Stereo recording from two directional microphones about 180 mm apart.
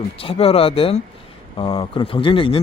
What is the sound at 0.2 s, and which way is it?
Speech, 35° left (ahead or behind).